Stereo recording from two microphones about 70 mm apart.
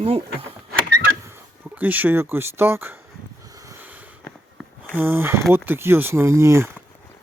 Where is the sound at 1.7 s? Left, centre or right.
Right.